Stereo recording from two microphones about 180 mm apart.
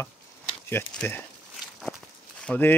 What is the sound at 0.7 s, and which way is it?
Speech, 10° left (ahead or behind).